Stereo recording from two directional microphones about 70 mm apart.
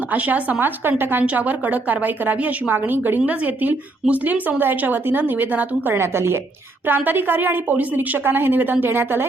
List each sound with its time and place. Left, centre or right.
0.1 s a woman's voice: right